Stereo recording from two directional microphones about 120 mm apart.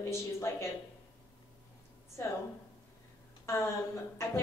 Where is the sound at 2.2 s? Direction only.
25° left (ahead or behind).